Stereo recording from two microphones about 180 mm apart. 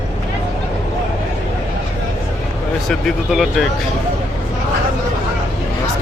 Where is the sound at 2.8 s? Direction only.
Centre (ahead or behind).